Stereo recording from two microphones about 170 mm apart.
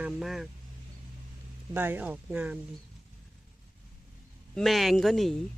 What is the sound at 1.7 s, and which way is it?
Speech, 10° right (ahead or behind).